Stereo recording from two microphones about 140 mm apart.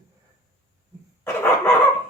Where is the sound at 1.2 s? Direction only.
15° left (ahead or behind).